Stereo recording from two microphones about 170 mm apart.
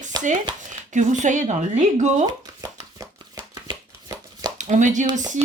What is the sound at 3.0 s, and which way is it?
Shuffling cards, 25° right (ahead or behind).